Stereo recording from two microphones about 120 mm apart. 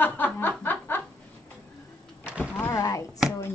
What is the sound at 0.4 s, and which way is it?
Snicker, 15° left (ahead or behind).